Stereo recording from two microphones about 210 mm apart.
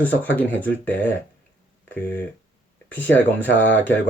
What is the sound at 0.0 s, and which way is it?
Speech, 10° left (ahead or behind).